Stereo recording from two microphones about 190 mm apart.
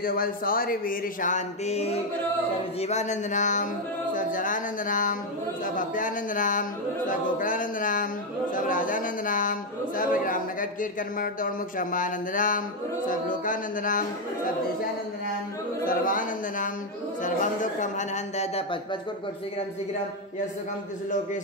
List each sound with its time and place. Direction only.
0.0 s a man's voice: 50° left (ahead or behind)
15.9 s a man's voice: 45° left (ahead or behind)